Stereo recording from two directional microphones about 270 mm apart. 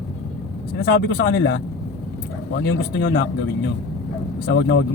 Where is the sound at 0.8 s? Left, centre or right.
Left.